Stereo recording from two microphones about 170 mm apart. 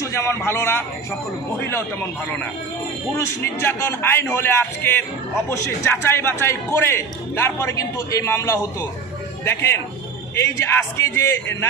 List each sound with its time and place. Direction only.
0.0 s a man's voice: 15° left (ahead or behind)
3.4 s a man's voice: 15° left (ahead or behind)